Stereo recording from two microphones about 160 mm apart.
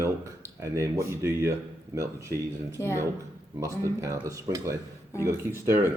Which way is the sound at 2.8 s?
15° left (ahead or behind).